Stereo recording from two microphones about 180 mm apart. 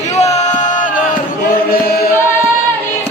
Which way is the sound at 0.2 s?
40° left (ahead or behind).